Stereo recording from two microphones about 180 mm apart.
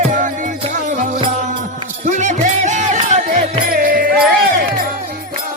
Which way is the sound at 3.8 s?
50° right (ahead or behind).